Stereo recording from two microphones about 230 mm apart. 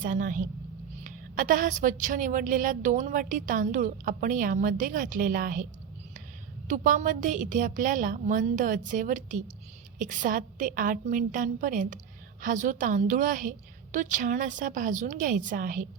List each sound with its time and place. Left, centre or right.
0.0 s a woman's voice: right
6.7 s a woman's voice: right